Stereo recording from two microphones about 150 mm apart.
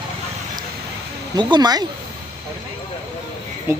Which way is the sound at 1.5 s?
25° right (ahead or behind).